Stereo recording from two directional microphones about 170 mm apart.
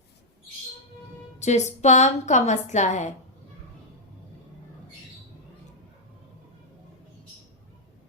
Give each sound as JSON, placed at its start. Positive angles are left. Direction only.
{"t": 1.4, "sound": "music", "side_deg": 40}
{"t": 1.8, "sound": "a woman's voice", "side_deg": 45}